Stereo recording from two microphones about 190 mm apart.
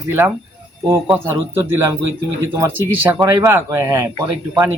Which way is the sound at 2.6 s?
15° right (ahead or behind).